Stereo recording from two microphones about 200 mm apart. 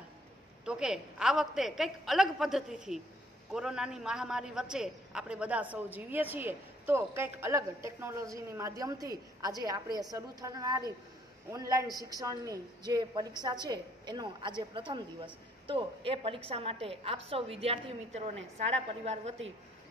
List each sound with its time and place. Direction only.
0.7 s a woman's voice: 5° right (ahead or behind); by 19.3 s 35° right (ahead or behind)